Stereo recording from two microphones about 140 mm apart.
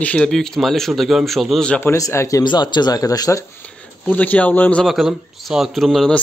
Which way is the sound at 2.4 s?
30° left (ahead or behind).